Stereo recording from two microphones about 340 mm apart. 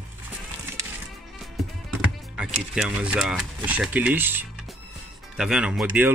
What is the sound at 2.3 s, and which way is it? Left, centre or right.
Speech, centre.